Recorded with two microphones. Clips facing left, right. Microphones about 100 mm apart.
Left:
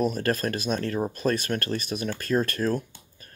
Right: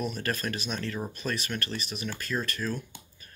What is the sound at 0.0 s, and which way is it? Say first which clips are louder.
Speech: left 7 dB; 40° left (ahead or behind).